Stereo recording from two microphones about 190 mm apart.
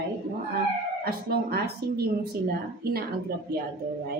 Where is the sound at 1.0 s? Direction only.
55° right (ahead or behind).